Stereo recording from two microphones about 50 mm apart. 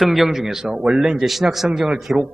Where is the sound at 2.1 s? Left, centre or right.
Centre.